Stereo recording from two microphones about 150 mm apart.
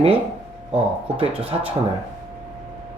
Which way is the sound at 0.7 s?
40° right (ahead or behind).